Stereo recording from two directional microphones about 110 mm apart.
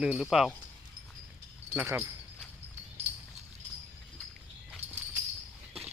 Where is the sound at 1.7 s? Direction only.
20° right (ahead or behind).